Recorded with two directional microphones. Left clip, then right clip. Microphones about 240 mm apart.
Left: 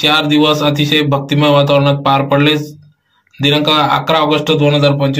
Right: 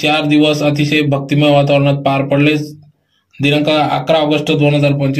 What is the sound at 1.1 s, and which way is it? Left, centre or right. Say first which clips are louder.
Speech: left 1 dB; left.